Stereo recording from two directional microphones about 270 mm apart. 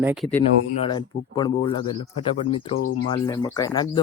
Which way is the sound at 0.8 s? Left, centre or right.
Centre.